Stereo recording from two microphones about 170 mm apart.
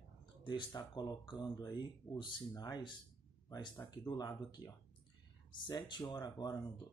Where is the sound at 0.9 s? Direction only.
25° left (ahead or behind).